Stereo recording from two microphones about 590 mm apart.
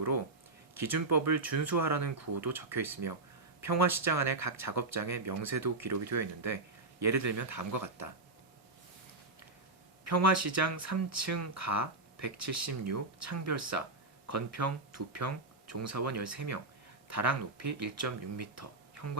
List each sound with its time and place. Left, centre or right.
1.4 s speech: right
10.0 s speech: right